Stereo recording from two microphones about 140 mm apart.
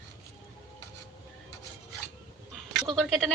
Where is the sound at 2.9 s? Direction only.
5° left (ahead or behind).